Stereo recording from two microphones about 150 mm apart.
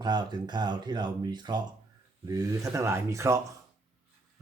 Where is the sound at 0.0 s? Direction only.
30° right (ahead or behind).